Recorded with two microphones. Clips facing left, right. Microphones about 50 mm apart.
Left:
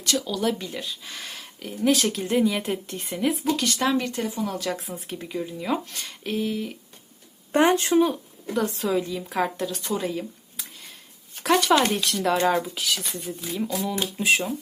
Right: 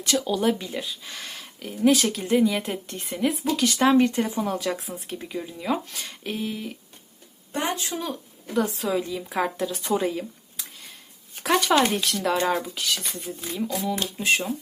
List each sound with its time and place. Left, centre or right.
0.0 s speech: centre
0.6 s speech: centre
3.8 s speech: right
4.4 s speech: centre
7.5 s speech: left
8.5 s speech: centre
9.8 s a sound: centre
11.4 s speech: centre